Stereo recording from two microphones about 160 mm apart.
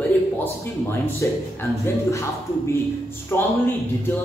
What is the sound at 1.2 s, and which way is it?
A man's voice, 15° left (ahead or behind).